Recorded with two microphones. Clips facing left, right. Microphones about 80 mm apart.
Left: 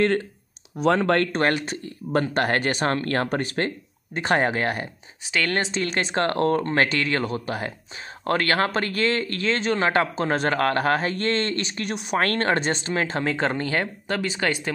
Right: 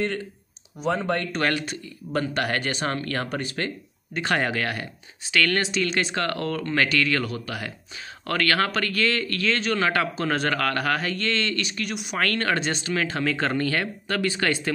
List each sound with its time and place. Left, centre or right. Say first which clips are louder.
0.7 s speech: left 5 dB; left
1.3 s speech: left 3 dB; left; by 14.7 s centre